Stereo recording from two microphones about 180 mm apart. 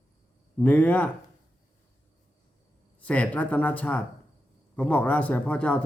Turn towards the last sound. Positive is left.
turn(degrees=5)  # may be behind; listen again after turning